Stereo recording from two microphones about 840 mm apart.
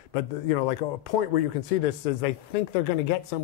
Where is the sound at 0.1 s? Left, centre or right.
Left.